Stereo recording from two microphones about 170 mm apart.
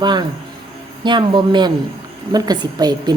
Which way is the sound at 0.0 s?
25° right (ahead or behind).